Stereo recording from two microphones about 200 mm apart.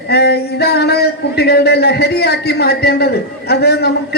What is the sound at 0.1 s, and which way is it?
A man's voice, 55° left (ahead or behind).